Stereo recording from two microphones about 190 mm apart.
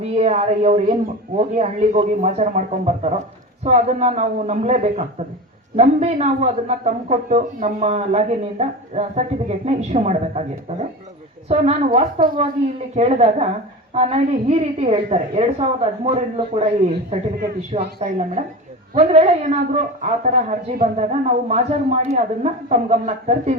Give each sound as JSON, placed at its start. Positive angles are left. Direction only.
{"t": 0.0, "sound": "a man's voice", "side_deg": -35}
{"t": 11.4, "sound": "a man's voice", "side_deg": -35}
{"t": 18.0, "sound": "a man's voice", "side_deg": -35}